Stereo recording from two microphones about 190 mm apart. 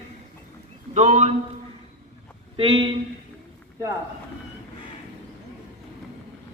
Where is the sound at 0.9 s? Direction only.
35° right (ahead or behind).